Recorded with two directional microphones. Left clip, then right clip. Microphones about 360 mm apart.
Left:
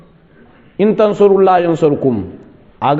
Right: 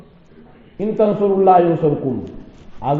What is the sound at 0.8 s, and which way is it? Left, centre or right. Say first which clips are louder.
A man's voice: left 6 dB; left.